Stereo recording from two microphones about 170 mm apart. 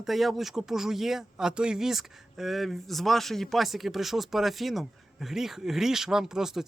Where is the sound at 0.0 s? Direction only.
Centre (ahead or behind).